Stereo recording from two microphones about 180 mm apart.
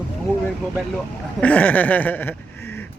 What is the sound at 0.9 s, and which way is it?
Speech, 5° left (ahead or behind).